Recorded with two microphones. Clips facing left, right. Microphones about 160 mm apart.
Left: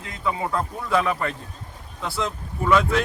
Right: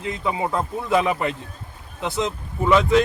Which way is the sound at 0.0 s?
25° right (ahead or behind).